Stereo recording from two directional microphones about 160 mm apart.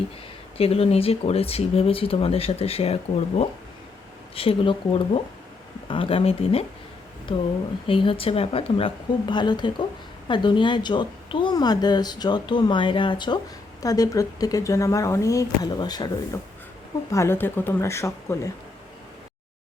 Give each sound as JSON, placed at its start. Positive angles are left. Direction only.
{"t": 0.5, "sound": "speech", "side_deg": 40}
{"t": 7.9, "sound": "a woman's voice", "side_deg": 35}
{"t": 17.1, "sound": "speech", "side_deg": 15}